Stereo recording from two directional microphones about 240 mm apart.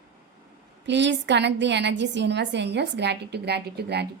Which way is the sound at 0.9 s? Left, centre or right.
Right.